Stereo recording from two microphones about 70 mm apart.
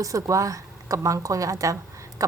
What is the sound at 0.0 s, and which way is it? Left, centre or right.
A woman's voice, right.